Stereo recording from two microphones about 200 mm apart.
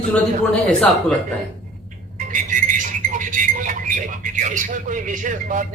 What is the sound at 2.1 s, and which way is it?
Music, 40° right (ahead or behind).